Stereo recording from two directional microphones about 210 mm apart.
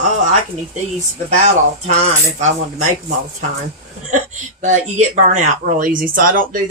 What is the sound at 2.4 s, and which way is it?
Speech, 35° right (ahead or behind).